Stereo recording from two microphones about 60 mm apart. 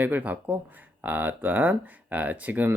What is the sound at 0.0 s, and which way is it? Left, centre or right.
Speech, right.